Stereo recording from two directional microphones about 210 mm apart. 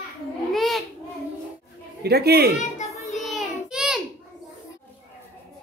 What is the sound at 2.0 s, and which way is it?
Speech, 50° right (ahead or behind).